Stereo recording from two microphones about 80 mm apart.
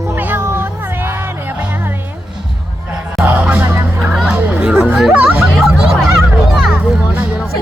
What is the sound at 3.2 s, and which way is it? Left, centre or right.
Music, right.